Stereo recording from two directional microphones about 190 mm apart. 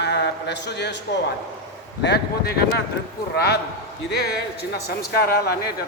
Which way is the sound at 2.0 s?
55° left (ahead or behind).